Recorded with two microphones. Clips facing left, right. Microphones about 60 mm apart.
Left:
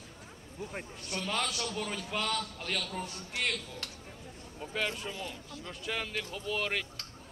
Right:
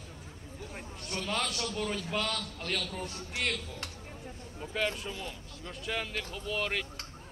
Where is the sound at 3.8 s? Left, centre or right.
Right.